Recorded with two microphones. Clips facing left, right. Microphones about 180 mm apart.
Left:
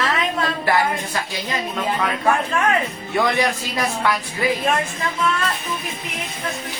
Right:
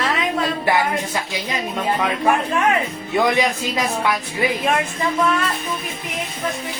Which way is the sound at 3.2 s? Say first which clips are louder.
Right 2 dB; 15° right (ahead or behind).